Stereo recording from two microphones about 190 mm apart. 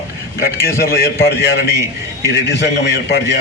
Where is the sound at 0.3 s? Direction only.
55° left (ahead or behind).